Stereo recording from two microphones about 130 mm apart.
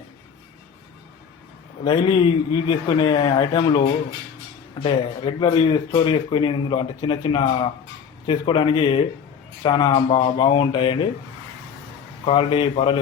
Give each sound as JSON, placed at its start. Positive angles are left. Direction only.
{"t": 1.8, "sound": "speech", "side_deg": 40}
{"t": 12.2, "sound": "a man's voice", "side_deg": 45}